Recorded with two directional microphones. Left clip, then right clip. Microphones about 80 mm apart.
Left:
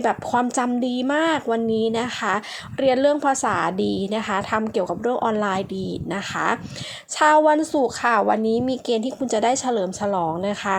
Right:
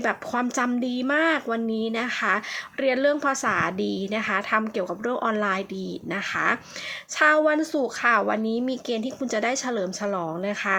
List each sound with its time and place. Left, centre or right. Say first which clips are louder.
0.0 s speech: left 5 dB; left
8.3 s speech: left 5 dB; left